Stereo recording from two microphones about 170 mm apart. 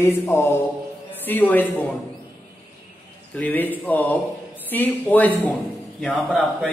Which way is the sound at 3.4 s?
10° left (ahead or behind).